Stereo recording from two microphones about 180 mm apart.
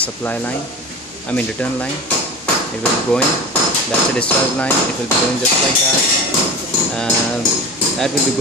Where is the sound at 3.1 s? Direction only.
10° left (ahead or behind).